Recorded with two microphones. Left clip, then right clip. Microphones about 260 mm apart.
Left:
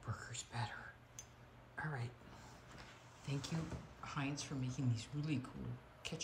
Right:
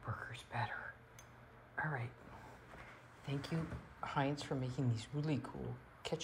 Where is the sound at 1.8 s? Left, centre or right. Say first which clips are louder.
Right 5 dB; centre.